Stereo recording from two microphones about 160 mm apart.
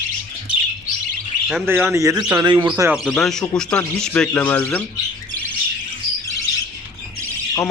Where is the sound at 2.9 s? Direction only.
Centre (ahead or behind).